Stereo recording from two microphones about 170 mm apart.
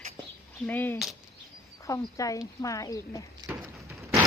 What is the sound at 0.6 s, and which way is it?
Speech, 10° left (ahead or behind).